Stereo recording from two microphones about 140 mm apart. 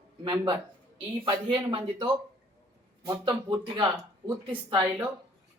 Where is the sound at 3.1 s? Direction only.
35° right (ahead or behind).